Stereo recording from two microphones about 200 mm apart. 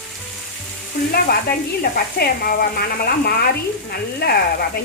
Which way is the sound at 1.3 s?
50° left (ahead or behind).